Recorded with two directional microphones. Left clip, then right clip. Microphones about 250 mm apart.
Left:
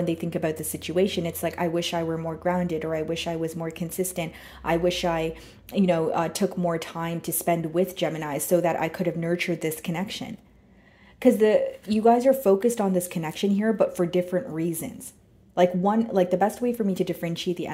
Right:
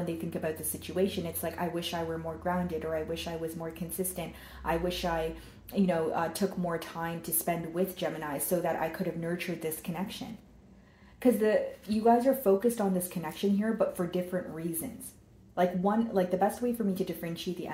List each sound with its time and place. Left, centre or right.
0.0 s speech: left
11.2 s speech: left